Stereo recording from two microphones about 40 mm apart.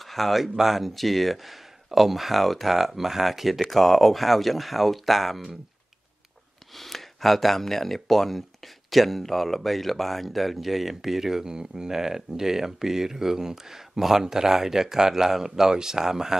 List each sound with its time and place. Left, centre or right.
0.0 s speech: centre
6.7 s speech: centre